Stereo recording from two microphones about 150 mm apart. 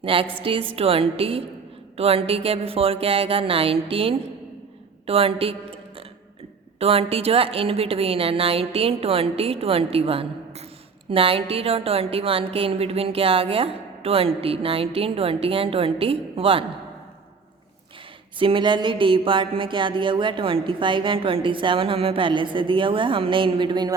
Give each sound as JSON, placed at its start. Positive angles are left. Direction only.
{"t": 0.0, "sound": "a woman's voice", "side_deg": -35}
{"t": 6.7, "sound": "a woman's voice", "side_deg": -40}
{"t": 18.3, "sound": "a woman's voice", "side_deg": -35}